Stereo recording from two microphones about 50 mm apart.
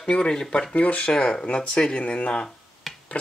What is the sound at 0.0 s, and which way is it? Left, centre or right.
Speech, centre.